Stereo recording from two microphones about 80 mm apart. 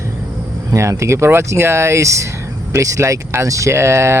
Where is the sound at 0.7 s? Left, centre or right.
Right.